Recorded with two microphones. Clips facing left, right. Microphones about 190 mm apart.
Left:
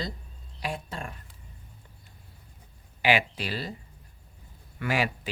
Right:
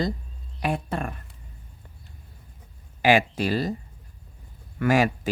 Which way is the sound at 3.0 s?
45° right (ahead or behind).